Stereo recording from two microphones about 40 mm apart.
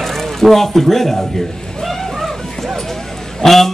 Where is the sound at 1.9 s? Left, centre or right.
Centre.